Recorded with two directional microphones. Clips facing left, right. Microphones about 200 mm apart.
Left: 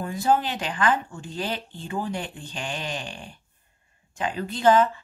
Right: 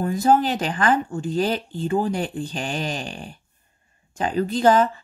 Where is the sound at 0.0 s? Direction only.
40° right (ahead or behind).